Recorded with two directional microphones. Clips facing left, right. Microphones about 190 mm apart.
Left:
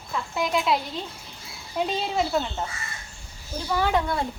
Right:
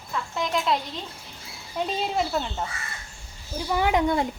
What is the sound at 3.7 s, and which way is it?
Speech, 15° right (ahead or behind).